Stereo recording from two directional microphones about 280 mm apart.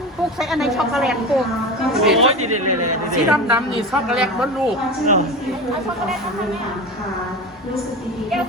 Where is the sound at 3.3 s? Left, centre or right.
Centre.